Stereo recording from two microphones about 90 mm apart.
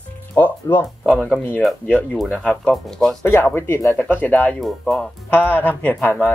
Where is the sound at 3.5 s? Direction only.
30° left (ahead or behind).